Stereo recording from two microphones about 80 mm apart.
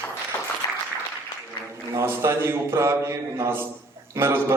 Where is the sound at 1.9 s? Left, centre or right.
Right.